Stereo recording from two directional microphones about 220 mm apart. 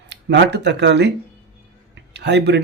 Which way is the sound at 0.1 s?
50° right (ahead or behind).